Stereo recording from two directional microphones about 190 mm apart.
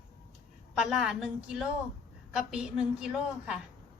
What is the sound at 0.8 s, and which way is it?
A woman's voice, 5° right (ahead or behind).